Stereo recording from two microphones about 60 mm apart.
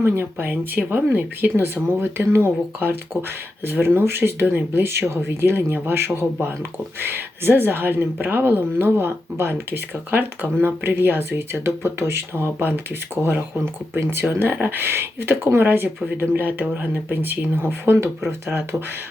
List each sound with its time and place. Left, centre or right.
0.0 s speech: right
14.0 s speech: right